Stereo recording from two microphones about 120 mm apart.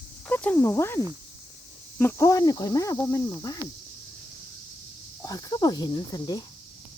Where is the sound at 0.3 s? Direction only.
15° left (ahead or behind); by 3.6 s 30° left (ahead or behind).